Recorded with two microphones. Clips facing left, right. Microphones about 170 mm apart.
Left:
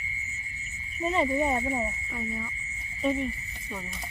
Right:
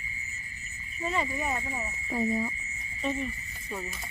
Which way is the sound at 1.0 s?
25° left (ahead or behind).